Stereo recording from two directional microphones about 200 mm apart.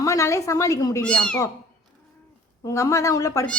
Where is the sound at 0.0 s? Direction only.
15° left (ahead or behind).